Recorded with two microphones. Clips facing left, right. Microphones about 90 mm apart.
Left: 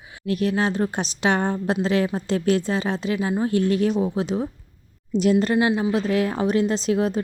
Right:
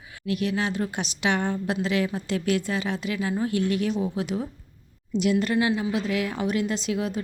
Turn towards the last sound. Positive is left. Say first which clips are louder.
# left 6 dB
turn(degrees=35)  # may be behind; listen again after turning